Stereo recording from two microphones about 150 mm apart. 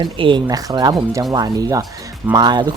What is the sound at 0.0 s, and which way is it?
Speech, 30° right (ahead or behind).